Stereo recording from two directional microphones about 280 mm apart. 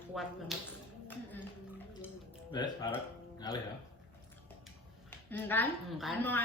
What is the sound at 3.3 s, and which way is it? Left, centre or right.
Music, centre.